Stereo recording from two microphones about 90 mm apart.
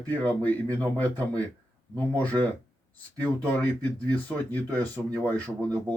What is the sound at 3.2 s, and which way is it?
A man's voice, 20° left (ahead or behind).